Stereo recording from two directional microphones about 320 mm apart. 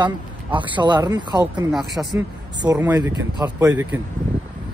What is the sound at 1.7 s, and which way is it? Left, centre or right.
Speech, centre.